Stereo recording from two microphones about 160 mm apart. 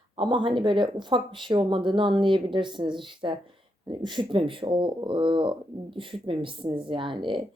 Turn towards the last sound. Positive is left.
turn(degrees=-30)  # may be behind; listen again after turning